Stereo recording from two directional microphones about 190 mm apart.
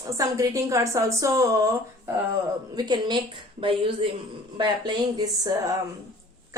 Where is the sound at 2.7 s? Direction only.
20° right (ahead or behind).